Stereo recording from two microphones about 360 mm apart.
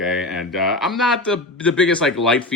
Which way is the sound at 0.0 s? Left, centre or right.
Centre.